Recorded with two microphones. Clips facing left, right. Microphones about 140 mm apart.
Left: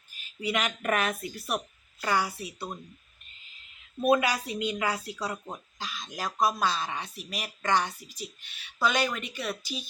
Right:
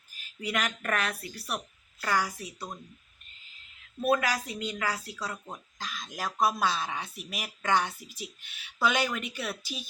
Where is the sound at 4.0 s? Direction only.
10° left (ahead or behind).